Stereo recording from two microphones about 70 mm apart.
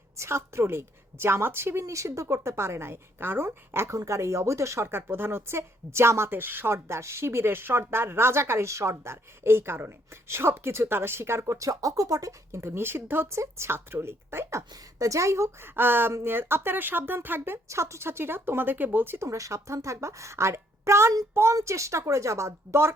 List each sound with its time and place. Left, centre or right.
0.2 s speech: right
1.8 s speech: right
3.9 s speech: right
14.9 s a woman's voice: right
15.7 s speech: right
17.7 s speech: right
19.3 s a woman's voice: right